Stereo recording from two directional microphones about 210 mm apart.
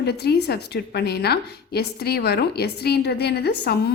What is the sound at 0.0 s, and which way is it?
A woman's voice, 50° left (ahead or behind).